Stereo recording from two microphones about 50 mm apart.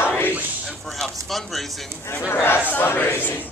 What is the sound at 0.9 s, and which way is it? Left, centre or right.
Speech, centre.